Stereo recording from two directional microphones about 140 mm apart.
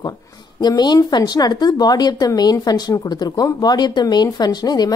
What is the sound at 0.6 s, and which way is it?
A woman's voice, 30° left (ahead or behind).